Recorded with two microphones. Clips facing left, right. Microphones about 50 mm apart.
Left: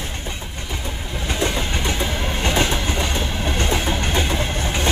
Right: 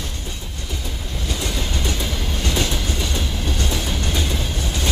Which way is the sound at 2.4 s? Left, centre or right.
Left.